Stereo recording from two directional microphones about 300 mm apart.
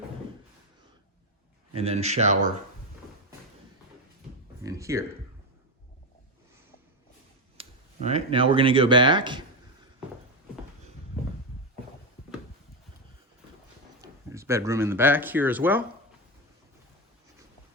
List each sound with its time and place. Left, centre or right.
1.7 s speech: centre
4.6 s speech: centre
7.5 s speech: centre
14.0 s speech: centre